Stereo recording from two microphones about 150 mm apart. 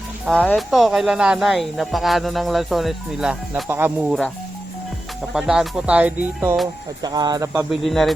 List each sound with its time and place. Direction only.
0.3 s speech: 5° left (ahead or behind); by 4.1 s 15° right (ahead or behind)
5.3 s music: 5° right (ahead or behind)
7.0 s speech: 25° right (ahead or behind)
7.7 s speech: centre (ahead or behind)